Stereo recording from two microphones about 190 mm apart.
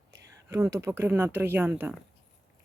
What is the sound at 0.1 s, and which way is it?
Speech, 15° right (ahead or behind).